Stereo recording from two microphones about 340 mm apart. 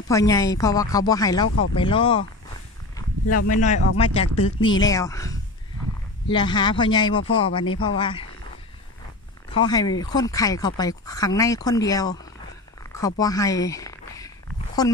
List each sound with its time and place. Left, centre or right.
0.1 s speech: centre
3.4 s speech: left
9.5 s speech: centre